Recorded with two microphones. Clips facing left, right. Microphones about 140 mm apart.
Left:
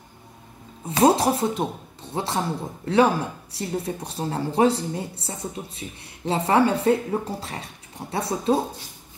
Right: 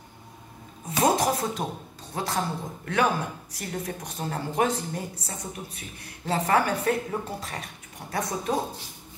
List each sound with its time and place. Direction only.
0.8 s speech: 30° left (ahead or behind)